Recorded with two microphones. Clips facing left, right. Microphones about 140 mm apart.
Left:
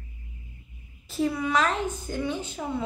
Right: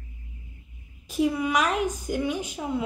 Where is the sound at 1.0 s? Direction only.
15° right (ahead or behind).